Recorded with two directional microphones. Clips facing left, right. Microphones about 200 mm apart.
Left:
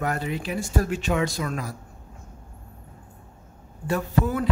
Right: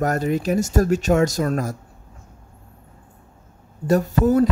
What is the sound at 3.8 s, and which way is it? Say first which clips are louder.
Speech: right 7 dB; 40° right (ahead or behind).